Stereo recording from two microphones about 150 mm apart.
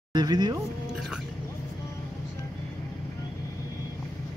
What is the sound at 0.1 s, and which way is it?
Speech, 30° right (ahead or behind).